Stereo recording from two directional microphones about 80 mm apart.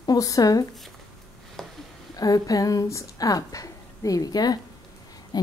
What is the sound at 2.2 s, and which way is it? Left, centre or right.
A woman's voice, left.